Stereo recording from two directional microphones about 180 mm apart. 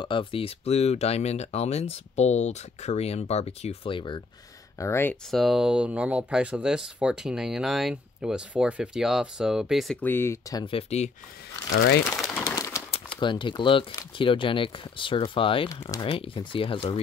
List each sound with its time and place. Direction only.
0.0 s speech: 30° left (ahead or behind)
4.7 s speech: 15° left (ahead or behind)
5.3 s speech: centre (ahead or behind); by 10.6 s 15° left (ahead or behind)
10.6 s speech: 30° left (ahead or behind)
12.4 s bird: 15° left (ahead or behind)
12.9 s speech: 25° left (ahead or behind)
15.7 s speech: 20° left (ahead or behind)
16.0 s speech: 30° left (ahead or behind)